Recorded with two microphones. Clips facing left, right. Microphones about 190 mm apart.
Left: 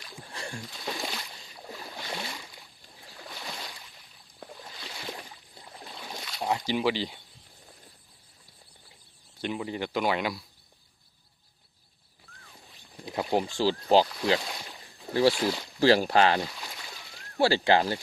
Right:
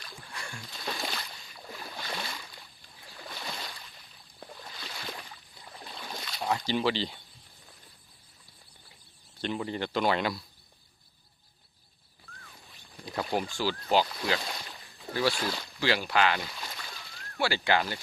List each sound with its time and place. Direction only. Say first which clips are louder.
0.3 s boat: left 5 dB; 35° left (ahead or behind)
0.8 s boat: even; 15° left (ahead or behind)
1.6 s a sound: left 1 dB; 20° left (ahead or behind)
3.2 s boat: even; centre (ahead or behind)
4.7 s boat: left 2 dB; 20° left (ahead or behind)
6.4 s speech: left 1 dB; 20° left (ahead or behind)
9.4 s speech: even; 10° left (ahead or behind)
13.0 s speech: left 3 dB; 25° left (ahead or behind)
15.1 s speech: left 6 dB; 30° left (ahead or behind)
15.9 s speech: left 5 dB; 35° left (ahead or behind)
16.6 s a sound: even; 15° left (ahead or behind)
17.3 s speech: left 5 dB; 30° left (ahead or behind)